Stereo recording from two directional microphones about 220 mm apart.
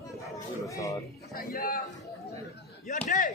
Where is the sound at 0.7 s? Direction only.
15° left (ahead or behind).